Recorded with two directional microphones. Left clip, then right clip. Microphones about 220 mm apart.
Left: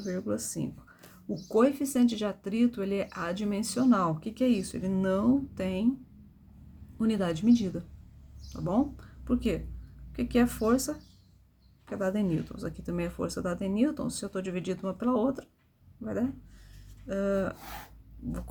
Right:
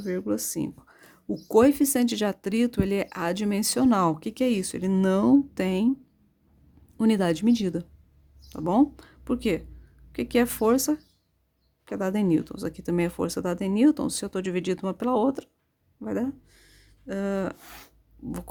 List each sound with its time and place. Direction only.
0.0 s speech: 45° right (ahead or behind)
7.0 s speech: 45° right (ahead or behind)